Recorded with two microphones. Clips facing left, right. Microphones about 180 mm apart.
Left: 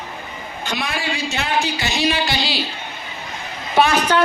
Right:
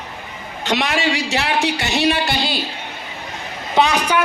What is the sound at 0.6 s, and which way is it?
Speech, 80° right.